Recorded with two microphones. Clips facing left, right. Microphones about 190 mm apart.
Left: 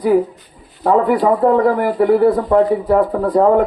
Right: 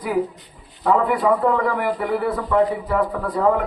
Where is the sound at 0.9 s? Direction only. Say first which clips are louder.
Left 6 dB; 35° left (ahead or behind).